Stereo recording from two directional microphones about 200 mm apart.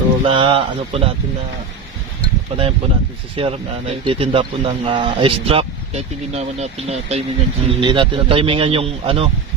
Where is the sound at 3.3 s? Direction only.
30° right (ahead or behind).